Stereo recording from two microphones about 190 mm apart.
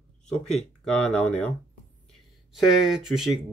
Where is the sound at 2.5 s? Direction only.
Centre (ahead or behind).